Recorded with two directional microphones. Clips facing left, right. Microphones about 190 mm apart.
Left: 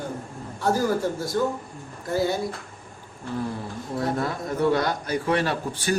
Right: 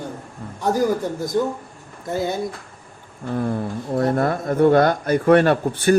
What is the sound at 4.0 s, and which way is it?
A man's voice, 55° right (ahead or behind).